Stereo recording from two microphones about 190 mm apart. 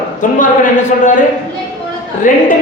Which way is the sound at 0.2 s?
40° left (ahead or behind).